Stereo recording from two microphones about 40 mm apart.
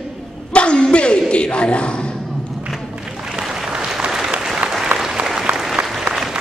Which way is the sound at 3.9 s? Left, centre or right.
Centre.